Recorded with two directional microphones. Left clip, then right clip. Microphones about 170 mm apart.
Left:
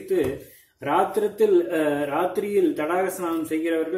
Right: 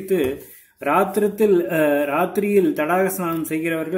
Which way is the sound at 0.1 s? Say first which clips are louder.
Right 3 dB; 30° right (ahead or behind).